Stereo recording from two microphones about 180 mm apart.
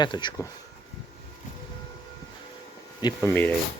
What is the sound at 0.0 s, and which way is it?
Speech, 25° left (ahead or behind).